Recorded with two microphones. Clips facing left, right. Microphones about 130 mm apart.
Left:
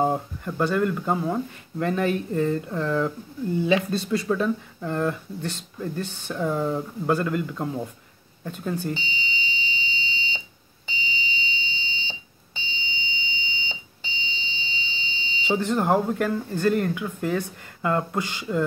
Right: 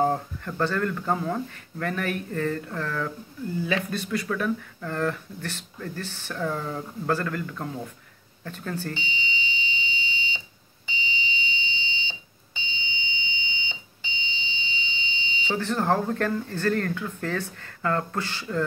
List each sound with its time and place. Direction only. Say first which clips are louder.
0.0 s speech: left 1 dB; 15° left (ahead or behind)
8.9 s fire alarm: left 1 dB; 35° left (ahead or behind)
10.9 s smoke detector: even; 35° left (ahead or behind)
12.5 s fire alarm: left 1 dB; 40° left (ahead or behind)
15.5 s speech: left 3 dB; 15° left (ahead or behind)